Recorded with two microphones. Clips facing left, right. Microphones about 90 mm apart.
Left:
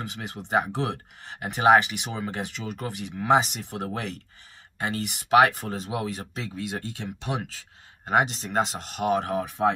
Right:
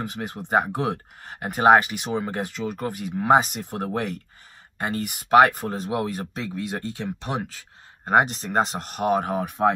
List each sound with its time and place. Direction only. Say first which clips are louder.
0.0 s speech: right 4 dB; 45° right (ahead or behind)